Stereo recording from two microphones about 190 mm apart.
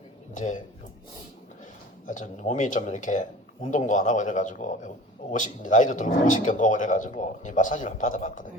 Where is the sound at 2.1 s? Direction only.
40° left (ahead or behind).